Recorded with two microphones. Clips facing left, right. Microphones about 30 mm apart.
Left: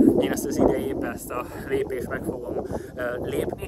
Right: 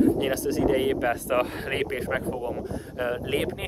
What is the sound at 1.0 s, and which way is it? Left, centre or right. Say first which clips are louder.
Speech: right 5 dB; right.